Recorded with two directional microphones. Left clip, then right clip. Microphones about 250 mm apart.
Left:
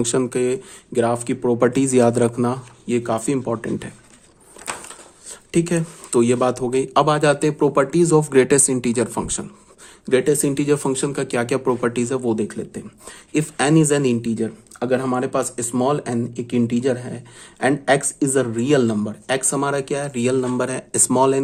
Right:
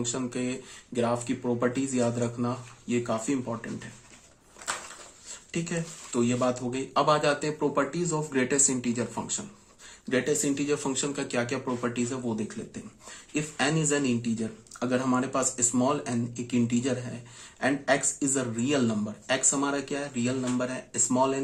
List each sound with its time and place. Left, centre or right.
0.0 s speech: left
5.5 s speech: left